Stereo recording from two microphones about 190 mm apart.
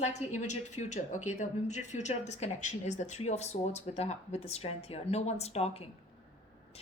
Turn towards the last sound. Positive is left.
turn(degrees=35)  # may be behind; listen again after turning